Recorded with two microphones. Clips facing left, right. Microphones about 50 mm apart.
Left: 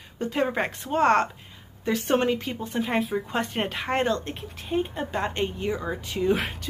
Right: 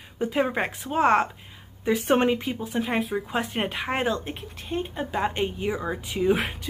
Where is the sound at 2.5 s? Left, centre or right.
Centre.